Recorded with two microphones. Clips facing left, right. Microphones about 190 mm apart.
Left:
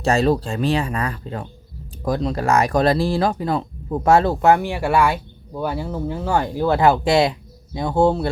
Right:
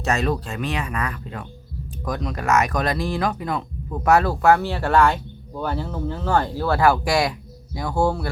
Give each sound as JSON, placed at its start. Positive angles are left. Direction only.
{"t": 0.0, "sound": "speech", "side_deg": 30}